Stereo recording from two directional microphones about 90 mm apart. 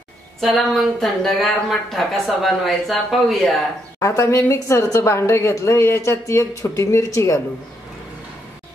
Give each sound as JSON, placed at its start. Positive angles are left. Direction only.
{"t": 0.4, "sound": "speech", "side_deg": 0}
{"t": 4.0, "sound": "a woman's voice", "side_deg": 35}